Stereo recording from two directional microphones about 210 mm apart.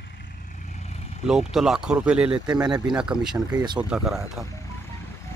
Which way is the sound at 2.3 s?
20° right (ahead or behind).